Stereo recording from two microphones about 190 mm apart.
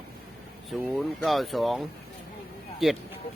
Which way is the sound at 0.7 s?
Centre (ahead or behind).